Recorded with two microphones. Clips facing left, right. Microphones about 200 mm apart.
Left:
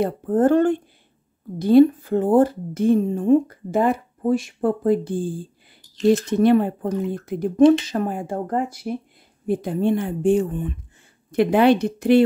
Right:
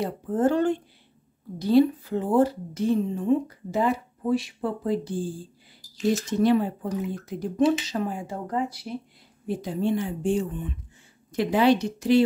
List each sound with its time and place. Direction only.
0.0 s a woman's voice: 55° left (ahead or behind)
6.3 s a woman's voice: 55° left (ahead or behind)